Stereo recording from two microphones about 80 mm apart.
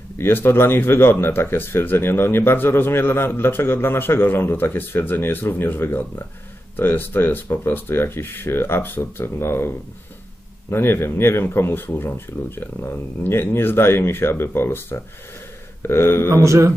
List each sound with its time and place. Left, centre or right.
0.2 s speech: left
10.7 s speech: left
16.3 s a man's voice: right